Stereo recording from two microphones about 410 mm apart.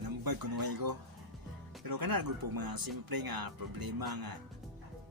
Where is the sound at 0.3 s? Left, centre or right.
Right.